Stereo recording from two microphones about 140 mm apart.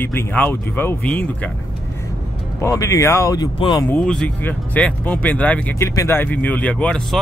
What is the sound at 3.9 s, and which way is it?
Speech, 5° left (ahead or behind).